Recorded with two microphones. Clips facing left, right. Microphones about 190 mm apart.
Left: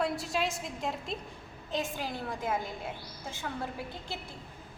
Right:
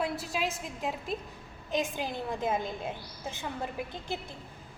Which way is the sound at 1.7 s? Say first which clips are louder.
Right 3 dB; 15° right (ahead or behind).